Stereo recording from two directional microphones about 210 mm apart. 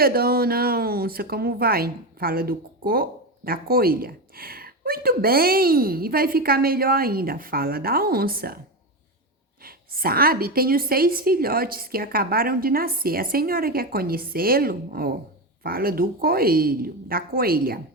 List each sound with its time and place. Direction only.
0.0 s speech: 45° right (ahead or behind)
9.6 s speech: 45° right (ahead or behind)